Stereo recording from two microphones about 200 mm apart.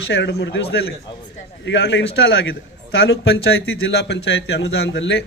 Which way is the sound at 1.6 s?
65° left (ahead or behind).